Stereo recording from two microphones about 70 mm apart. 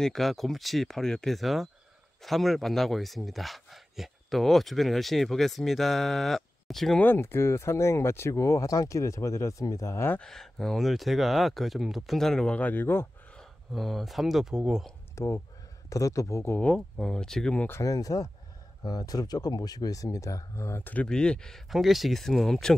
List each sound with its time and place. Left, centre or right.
0.0 s speech: centre
7.2 s speech: left
10.2 s speech: centre
12.5 s speech: left
13.7 s speech: centre
15.1 s speech: left
16.7 s speech: centre
17.8 s speech: left
20.8 s speech: left
21.1 s speech: centre
21.6 s speech: centre